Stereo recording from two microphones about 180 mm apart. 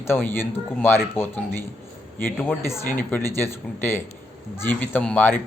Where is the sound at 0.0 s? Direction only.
15° left (ahead or behind).